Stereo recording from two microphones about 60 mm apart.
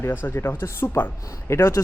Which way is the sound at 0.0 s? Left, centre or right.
Left.